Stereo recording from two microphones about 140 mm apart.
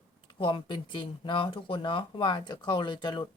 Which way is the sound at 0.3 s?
35° left (ahead or behind).